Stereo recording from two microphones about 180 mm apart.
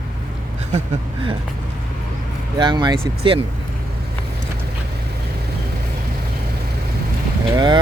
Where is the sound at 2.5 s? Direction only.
25° right (ahead or behind).